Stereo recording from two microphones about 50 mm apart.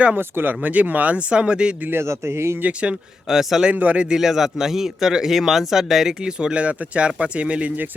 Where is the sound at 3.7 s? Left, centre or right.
Right.